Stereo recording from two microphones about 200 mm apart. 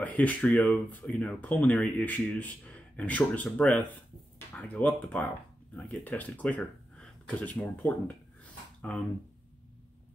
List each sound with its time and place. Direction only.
0.0 s speech: 5° left (ahead or behind)